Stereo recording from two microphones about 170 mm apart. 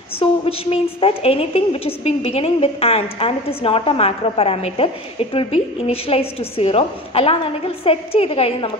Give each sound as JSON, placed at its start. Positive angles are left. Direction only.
{"t": 0.2, "sound": "a woman's voice", "side_deg": 35}